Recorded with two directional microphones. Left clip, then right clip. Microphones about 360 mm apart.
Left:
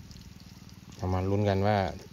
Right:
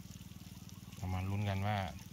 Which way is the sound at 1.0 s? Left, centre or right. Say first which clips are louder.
Left 14 dB; centre.